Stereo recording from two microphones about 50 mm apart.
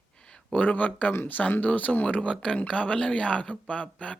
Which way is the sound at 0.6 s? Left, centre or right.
Left.